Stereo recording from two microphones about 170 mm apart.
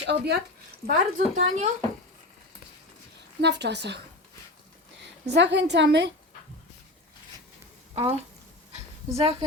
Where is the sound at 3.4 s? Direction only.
90° right.